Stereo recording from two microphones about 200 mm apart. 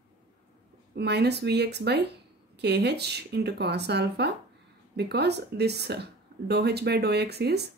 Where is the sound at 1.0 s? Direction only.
55° right (ahead or behind).